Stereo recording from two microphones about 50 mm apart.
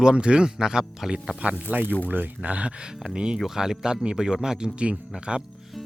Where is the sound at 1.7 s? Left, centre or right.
Right; by 5.4 s centre.